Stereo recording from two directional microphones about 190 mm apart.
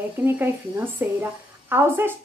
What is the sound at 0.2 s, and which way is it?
A woman's voice, 10° right (ahead or behind).